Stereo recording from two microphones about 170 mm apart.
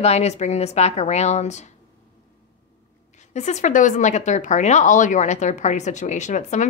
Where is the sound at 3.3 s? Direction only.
45° left (ahead or behind).